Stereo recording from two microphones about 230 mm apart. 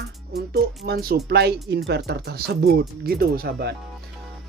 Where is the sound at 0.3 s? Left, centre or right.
Right.